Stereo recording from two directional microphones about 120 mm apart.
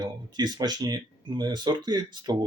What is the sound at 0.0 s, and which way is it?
Speech, 35° right (ahead or behind).